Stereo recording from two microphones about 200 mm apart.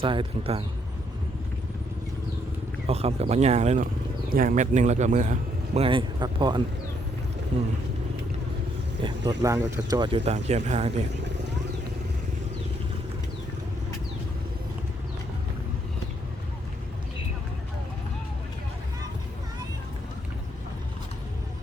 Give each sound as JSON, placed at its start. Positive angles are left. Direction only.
{"t": 0.0, "sound": "speech", "side_deg": -25}
{"t": 2.8, "sound": "speech", "side_deg": -30}
{"t": 9.0, "sound": "speech", "side_deg": -20}